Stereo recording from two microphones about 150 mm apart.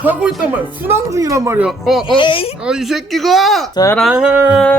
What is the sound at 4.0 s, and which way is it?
Speech, 5° right (ahead or behind).